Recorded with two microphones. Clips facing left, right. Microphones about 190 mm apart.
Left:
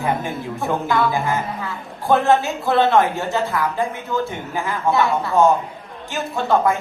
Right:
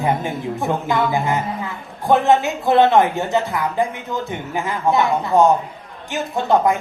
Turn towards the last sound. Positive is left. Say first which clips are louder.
# right 1 dB
turn(degrees=-20)  # may be behind; listen again after turning